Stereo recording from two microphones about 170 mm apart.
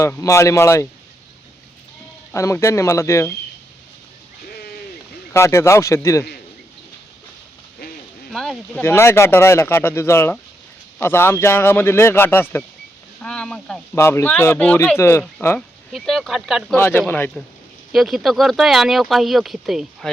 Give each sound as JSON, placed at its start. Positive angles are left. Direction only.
{"t": 0.0, "sound": "speech", "side_deg": 20}
{"t": 2.3, "sound": "speech", "side_deg": 15}
{"t": 5.3, "sound": "speech", "side_deg": 15}
{"t": 8.3, "sound": "speech", "side_deg": 0}
{"t": 8.8, "sound": "speech", "side_deg": 15}
{"t": 13.9, "sound": "speech", "side_deg": 15}
{"t": 15.9, "sound": "speech", "side_deg": 0}
{"t": 16.7, "sound": "speech", "side_deg": 10}
{"t": 17.9, "sound": "speech", "side_deg": 0}